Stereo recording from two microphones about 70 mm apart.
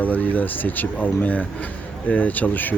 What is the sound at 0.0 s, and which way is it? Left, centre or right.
Speech, left.